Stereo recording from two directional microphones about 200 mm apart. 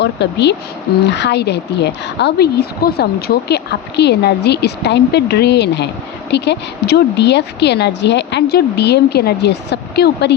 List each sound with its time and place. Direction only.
0.0 s a woman's voice: 60° left (ahead or behind)